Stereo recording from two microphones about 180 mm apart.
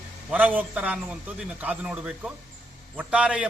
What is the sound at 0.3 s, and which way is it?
A man's voice, 10° right (ahead or behind).